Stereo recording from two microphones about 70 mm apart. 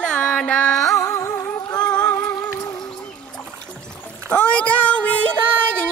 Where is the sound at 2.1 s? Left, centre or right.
Left.